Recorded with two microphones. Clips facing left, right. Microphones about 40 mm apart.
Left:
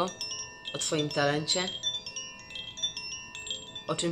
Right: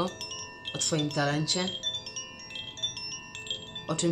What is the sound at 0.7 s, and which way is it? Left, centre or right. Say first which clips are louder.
Speech: even; centre.